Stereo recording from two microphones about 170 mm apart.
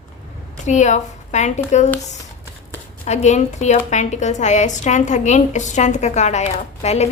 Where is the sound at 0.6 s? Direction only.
45° left (ahead or behind).